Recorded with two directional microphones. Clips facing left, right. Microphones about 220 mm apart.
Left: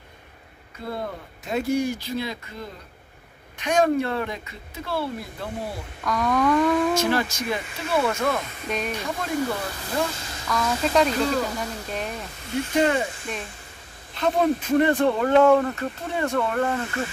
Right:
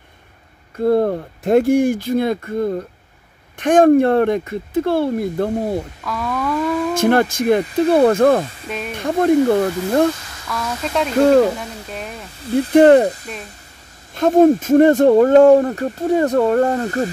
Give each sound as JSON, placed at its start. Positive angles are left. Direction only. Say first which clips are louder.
{"t": 0.7, "sound": "speech", "louder": "right 16 dB", "side_deg": -55}
{"t": 6.0, "sound": "speech", "louder": "left 4 dB", "side_deg": -5}
{"t": 7.0, "sound": "speech", "louder": "right 8 dB", "side_deg": -55}
{"t": 7.8, "sound": "speech", "louder": "right 11 dB", "side_deg": -35}
{"t": 8.1, "sound": "speech", "louder": "right 12 dB", "side_deg": -55}
{"t": 8.6, "sound": "speech", "louder": "right 1 dB", "side_deg": 0}
{"t": 8.9, "sound": "speech", "louder": "right 12 dB", "side_deg": -50}
{"t": 10.5, "sound": "speech", "louder": "even", "side_deg": 0}
{"t": 12.4, "sound": "speech", "louder": "right 10 dB", "side_deg": -35}
{"t": 12.7, "sound": "speech", "louder": "right 13 dB", "side_deg": -55}
{"t": 13.0, "sound": "speech", "louder": "right 8 dB", "side_deg": -40}